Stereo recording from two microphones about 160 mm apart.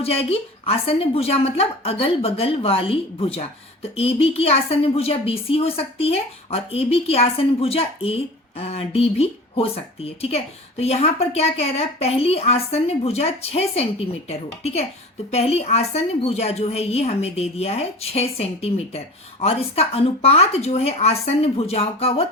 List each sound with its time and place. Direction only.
0.0 s a woman's voice: 40° left (ahead or behind)